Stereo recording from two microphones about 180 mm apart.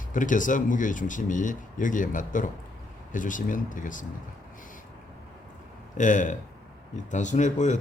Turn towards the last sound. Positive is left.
turn(degrees=40)  # may be behind; listen again after turning